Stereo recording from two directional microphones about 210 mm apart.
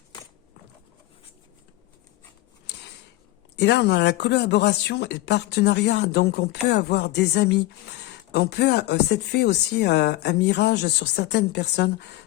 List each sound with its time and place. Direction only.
3.5 s speech: 55° left (ahead or behind)